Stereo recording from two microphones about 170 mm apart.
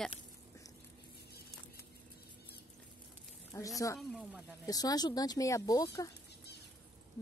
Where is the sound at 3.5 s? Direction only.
20° left (ahead or behind).